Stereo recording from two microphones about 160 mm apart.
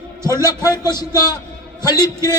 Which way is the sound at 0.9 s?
25° left (ahead or behind).